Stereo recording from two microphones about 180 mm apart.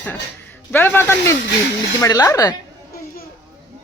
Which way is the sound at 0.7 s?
10° left (ahead or behind).